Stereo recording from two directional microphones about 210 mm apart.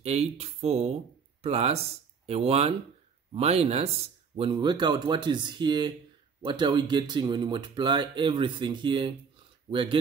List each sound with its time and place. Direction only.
0.0 s speech: 30° right (ahead or behind)